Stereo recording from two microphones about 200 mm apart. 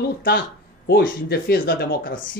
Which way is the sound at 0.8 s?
50° left (ahead or behind).